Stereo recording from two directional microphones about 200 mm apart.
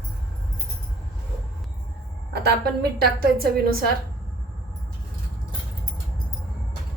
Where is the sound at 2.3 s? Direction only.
55° right (ahead or behind).